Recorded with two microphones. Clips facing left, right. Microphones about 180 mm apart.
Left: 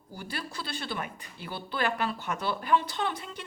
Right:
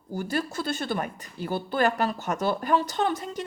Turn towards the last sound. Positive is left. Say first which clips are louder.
# right 6 dB
turn(degrees=-45)  # may be behind; listen again after turning